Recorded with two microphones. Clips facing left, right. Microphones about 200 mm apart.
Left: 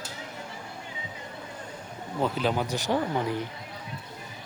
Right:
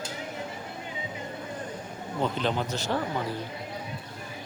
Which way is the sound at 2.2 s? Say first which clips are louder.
Left 1 dB; 5° left (ahead or behind).